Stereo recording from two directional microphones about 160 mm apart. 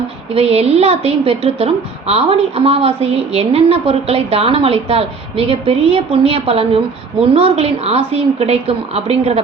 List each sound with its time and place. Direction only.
0.3 s a woman's voice: 40° right (ahead or behind)